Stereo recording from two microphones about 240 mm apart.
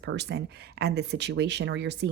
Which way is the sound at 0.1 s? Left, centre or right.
Right.